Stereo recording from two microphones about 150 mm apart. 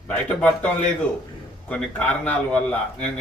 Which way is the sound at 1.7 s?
10° left (ahead or behind).